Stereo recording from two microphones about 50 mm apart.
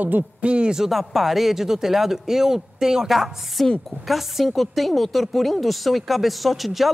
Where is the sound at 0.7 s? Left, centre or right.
Centre.